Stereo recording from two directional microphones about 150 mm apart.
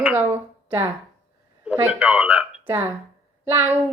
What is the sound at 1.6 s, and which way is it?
Speech, 10° right (ahead or behind).